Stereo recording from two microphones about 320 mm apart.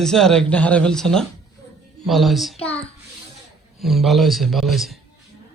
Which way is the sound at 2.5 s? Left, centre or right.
Centre.